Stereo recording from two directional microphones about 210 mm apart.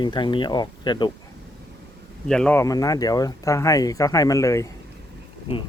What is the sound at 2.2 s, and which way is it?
Speech, 5° left (ahead or behind).